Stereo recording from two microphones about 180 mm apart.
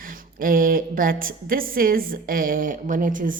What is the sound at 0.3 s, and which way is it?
A woman's voice, 50° right (ahead or behind).